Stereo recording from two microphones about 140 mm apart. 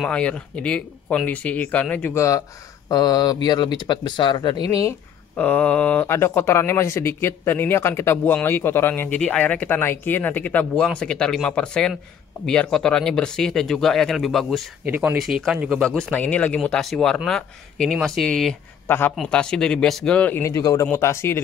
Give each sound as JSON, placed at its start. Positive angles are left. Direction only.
{"t": 0.0, "sound": "speech", "side_deg": 10}
{"t": 5.4, "sound": "speech", "side_deg": 10}
{"t": 15.8, "sound": "speech", "side_deg": 5}
{"t": 18.9, "sound": "speech", "side_deg": 15}